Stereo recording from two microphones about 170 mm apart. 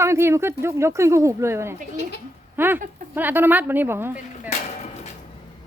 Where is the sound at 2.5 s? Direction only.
10° right (ahead or behind).